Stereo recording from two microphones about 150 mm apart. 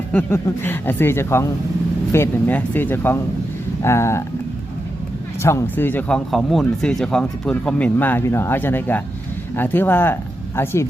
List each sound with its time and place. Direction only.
0.1 s speech: 15° left (ahead or behind)
5.4 s speech: 15° left (ahead or behind)